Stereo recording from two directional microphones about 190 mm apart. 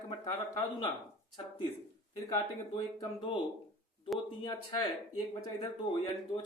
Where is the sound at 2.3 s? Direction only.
25° left (ahead or behind).